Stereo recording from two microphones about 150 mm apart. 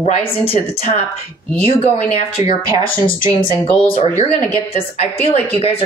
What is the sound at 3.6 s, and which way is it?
A woman's voice, 40° left (ahead or behind).